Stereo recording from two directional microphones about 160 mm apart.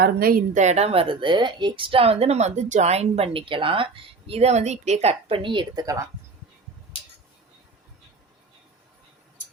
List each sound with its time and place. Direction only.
0.0 s a woman's voice: 65° right (ahead or behind); by 6.1 s 20° right (ahead or behind)